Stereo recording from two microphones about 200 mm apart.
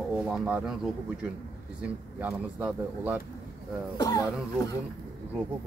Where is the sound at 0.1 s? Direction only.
Centre (ahead or behind).